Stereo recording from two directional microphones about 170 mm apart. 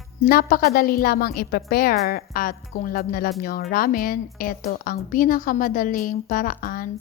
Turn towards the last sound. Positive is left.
turn(degrees=55)  # may be behind; listen again after turning